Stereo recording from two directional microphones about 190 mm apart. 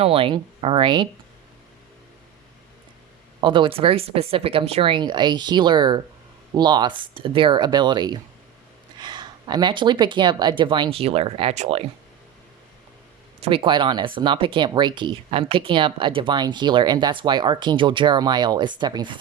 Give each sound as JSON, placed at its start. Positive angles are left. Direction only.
{"t": 0.0, "sound": "speech", "side_deg": -30}
{"t": 3.4, "sound": "speech", "side_deg": -25}
{"t": 13.4, "sound": "speech", "side_deg": -30}